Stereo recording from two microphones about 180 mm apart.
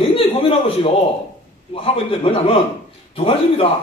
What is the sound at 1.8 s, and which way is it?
A man's voice, 35° left (ahead or behind).